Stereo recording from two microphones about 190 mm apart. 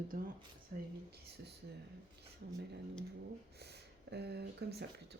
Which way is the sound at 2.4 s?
60° right (ahead or behind).